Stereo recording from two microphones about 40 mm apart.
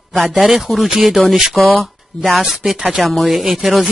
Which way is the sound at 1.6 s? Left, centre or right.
Centre.